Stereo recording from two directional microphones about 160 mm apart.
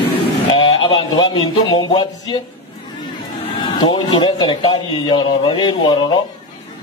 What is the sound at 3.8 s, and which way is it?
A man's voice, 30° left (ahead or behind).